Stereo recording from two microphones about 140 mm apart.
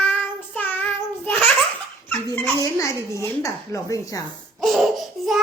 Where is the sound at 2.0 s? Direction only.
15° left (ahead or behind).